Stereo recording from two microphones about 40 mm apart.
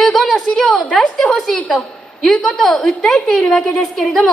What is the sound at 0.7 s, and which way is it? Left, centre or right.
Speech, left.